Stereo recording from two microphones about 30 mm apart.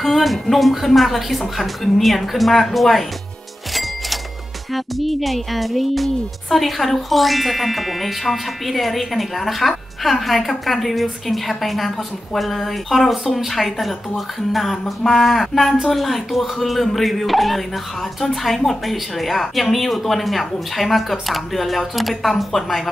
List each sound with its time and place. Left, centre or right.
0.0 s music: centre
4.7 s music: centre
22.4 s speech: centre